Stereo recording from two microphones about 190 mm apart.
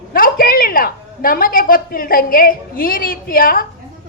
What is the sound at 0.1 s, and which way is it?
A woman's voice, 50° left (ahead or behind).